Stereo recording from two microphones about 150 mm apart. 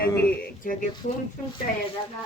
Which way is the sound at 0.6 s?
65° left (ahead or behind).